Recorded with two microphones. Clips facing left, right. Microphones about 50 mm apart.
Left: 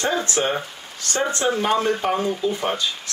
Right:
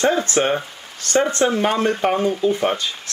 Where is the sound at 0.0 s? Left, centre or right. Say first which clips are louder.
Right 4 dB; right.